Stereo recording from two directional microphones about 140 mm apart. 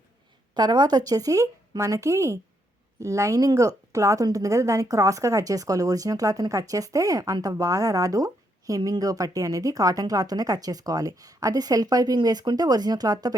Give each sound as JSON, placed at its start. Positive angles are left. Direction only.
{"t": 0.5, "sound": "a woman's voice", "side_deg": -30}